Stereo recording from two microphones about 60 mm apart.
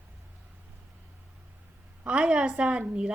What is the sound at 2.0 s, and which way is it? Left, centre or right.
A woman's voice, centre.